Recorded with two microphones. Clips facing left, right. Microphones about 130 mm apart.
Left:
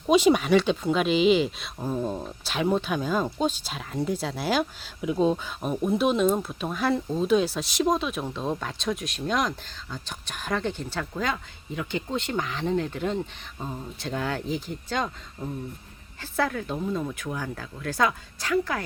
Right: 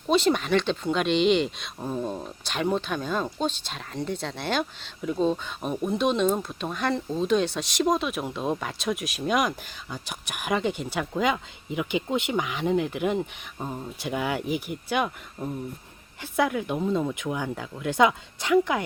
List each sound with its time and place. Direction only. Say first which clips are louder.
0.1 s speech: left 3 dB; 10° left (ahead or behind); by 18.8 s 20° right (ahead or behind)